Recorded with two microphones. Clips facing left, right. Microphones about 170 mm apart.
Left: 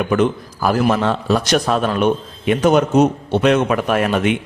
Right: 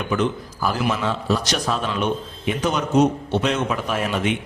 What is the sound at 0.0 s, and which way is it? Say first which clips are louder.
A man's voice: left 6 dB; 55° left (ahead or behind).